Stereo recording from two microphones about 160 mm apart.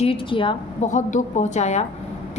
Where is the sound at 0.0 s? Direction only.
35° left (ahead or behind).